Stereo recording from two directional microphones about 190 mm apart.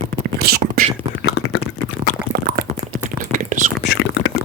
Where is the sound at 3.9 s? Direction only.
80° left.